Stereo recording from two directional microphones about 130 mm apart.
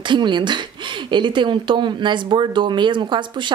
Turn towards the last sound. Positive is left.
turn(degrees=-35)  # may be behind; listen again after turning